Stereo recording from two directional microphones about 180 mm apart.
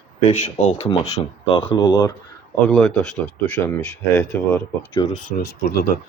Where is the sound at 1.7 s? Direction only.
25° left (ahead or behind).